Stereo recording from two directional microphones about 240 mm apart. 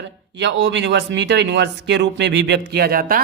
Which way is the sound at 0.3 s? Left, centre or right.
Right.